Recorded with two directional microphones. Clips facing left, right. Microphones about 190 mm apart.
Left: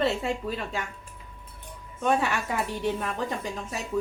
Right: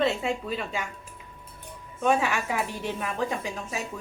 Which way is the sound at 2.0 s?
Centre (ahead or behind).